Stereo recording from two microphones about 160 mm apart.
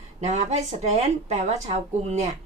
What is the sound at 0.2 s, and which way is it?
Speech, 45° right (ahead or behind).